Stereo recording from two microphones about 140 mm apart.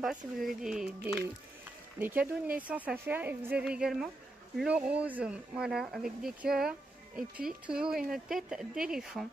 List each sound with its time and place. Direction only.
0.0 s speech: centre (ahead or behind)
2.0 s a woman's voice: 15° right (ahead or behind)